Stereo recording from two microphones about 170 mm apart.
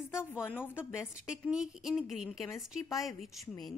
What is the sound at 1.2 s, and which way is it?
A woman's voice, 5° right (ahead or behind).